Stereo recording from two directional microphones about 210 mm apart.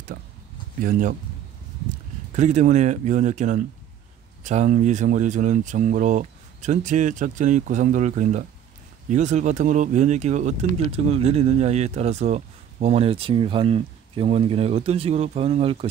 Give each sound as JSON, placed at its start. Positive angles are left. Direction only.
{"t": 0.7, "sound": "speech", "side_deg": -40}
{"t": 2.3, "sound": "speech", "side_deg": -35}